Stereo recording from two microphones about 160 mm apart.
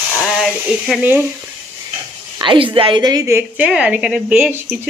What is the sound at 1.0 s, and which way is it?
Speech, 10° right (ahead or behind).